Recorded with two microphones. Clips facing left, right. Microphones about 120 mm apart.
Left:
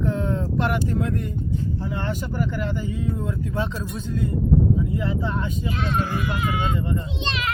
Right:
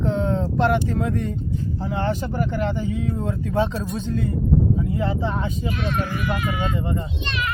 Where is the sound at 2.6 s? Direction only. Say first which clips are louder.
Right 3 dB; 90° right.